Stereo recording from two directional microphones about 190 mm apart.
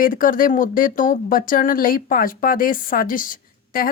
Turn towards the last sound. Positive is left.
turn(degrees=45)  # may be behind; listen again after turning